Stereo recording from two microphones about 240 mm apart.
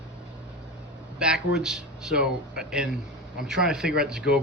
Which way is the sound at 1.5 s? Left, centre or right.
Centre.